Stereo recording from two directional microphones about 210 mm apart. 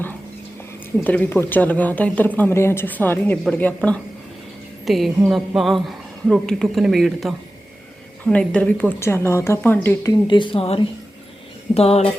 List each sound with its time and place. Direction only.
1.0 s a woman's voice: 10° left (ahead or behind); by 12.1 s 30° left (ahead or behind)